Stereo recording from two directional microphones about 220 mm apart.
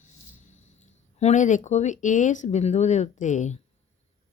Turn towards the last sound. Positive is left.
turn(degrees=35)  # may be behind; listen again after turning